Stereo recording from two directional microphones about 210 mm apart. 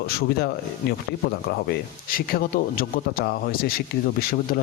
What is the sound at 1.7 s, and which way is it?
Speech, 45° left (ahead or behind).